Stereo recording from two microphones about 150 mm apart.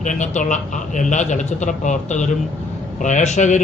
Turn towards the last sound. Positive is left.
turn(degrees=50)  # may be behind; listen again after turning